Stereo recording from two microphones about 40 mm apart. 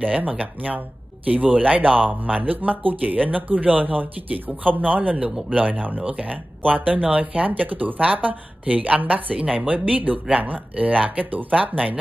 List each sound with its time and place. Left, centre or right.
0.0 s speech: right
6.0 s speech: right